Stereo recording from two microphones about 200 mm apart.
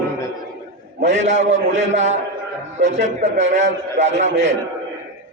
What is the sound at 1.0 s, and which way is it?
Speech, 35° right (ahead or behind).